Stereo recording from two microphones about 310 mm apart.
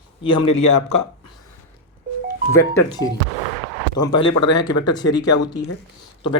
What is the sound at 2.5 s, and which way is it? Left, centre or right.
Speech, centre.